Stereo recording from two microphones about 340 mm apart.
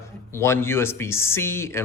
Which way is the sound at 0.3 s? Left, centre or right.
Centre.